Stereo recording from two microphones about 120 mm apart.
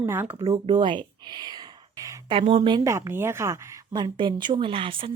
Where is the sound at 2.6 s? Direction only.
35° right (ahead or behind).